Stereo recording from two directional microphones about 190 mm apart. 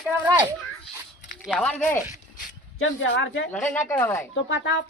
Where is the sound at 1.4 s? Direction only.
Centre (ahead or behind).